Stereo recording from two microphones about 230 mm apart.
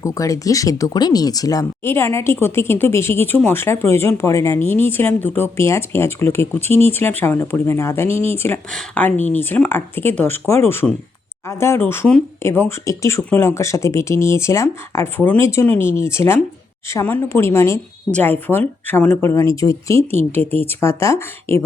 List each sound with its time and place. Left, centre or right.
0.0 s speech: centre
20.0 s speech: right
20.3 s speech: centre